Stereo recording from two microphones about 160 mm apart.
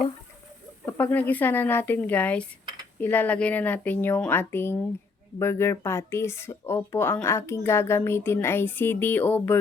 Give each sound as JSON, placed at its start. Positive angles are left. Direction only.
{"t": 0.9, "sound": "speech", "side_deg": 10}